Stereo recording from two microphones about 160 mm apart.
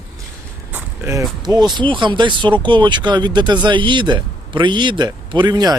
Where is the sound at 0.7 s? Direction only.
15° right (ahead or behind).